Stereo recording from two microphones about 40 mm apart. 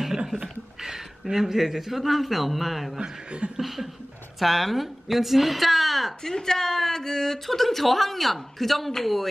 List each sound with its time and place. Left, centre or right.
0.0 s a sound: centre
0.7 s a man's voice: centre
3.0 s speech: right
3.5 s speech: centre